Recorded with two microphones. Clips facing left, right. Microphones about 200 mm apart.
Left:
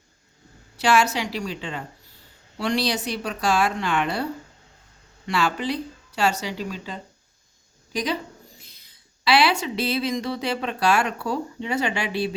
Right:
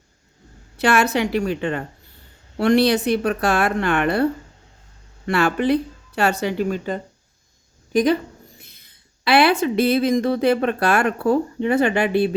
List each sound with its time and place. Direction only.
0.8 s speech: 60° right (ahead or behind)